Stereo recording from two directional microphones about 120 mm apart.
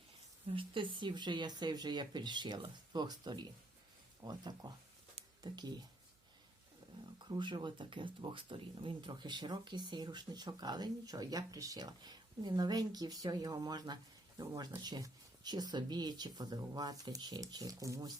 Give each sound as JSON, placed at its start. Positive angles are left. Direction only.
{"t": 0.4, "sound": "speech", "side_deg": -45}
{"t": 7.0, "sound": "speech", "side_deg": -40}